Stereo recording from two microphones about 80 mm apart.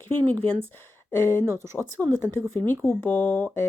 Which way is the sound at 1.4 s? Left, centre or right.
Right.